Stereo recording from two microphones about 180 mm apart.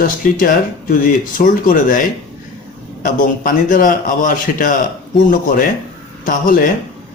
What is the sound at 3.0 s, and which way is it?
A man's voice, 50° left (ahead or behind).